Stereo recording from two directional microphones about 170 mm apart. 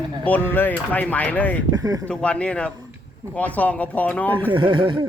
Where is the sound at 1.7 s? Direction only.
20° right (ahead or behind).